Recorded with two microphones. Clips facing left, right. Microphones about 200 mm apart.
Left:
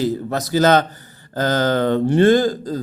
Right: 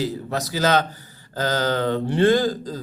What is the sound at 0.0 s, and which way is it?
A man's voice, 50° left (ahead or behind).